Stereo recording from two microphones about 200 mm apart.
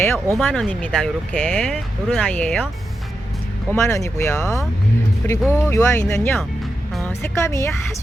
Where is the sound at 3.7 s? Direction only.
15° left (ahead or behind).